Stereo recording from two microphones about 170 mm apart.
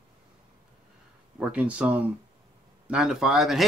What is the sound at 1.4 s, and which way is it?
Speech, 5° right (ahead or behind).